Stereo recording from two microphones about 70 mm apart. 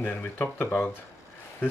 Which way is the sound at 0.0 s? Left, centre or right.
Left.